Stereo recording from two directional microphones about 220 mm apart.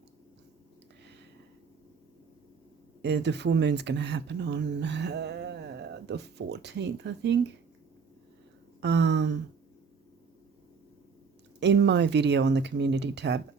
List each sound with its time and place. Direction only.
3.0 s speech: 50° right (ahead or behind)
8.8 s speech: 50° right (ahead or behind)
11.6 s speech: 50° right (ahead or behind)